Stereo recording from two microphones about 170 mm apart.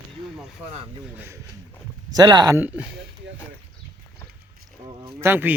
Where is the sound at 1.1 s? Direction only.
15° right (ahead or behind).